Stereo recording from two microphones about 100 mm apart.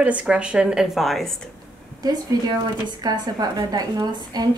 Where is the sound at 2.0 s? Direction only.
40° right (ahead or behind).